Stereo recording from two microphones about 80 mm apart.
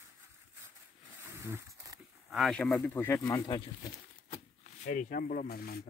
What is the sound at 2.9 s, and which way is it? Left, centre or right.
Speech, left.